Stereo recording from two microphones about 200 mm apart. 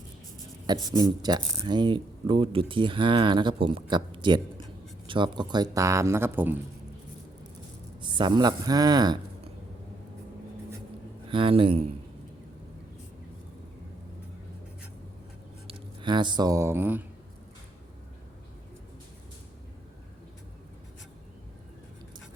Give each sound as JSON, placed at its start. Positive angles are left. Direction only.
{"t": 0.7, "sound": "speech", "side_deg": -20}
{"t": 8.0, "sound": "speech", "side_deg": -20}
{"t": 11.3, "sound": "speech", "side_deg": -25}
{"t": 15.6, "sound": "speech", "side_deg": -25}